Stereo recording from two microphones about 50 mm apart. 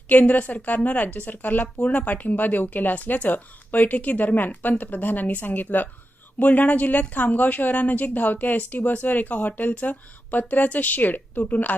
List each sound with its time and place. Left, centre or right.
0.1 s a woman's voice: left